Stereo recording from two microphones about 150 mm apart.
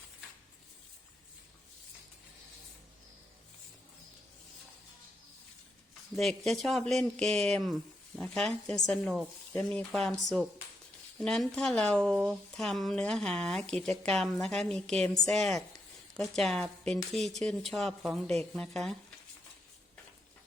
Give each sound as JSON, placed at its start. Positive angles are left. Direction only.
{"t": 6.1, "sound": "speech", "side_deg": 0}